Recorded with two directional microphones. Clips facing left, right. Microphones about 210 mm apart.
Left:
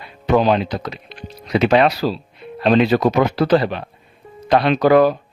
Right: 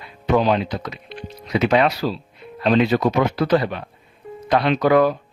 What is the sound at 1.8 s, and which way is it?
Speech, 35° left (ahead or behind).